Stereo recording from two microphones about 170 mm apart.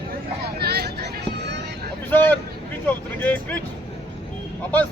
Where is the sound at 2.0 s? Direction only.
10° left (ahead or behind).